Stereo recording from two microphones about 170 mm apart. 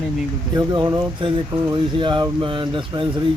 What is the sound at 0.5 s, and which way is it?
Speech, 25° right (ahead or behind).